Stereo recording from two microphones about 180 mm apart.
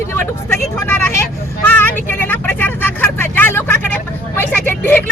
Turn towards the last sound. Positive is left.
turn(degrees=10)  # may be behind; listen again after turning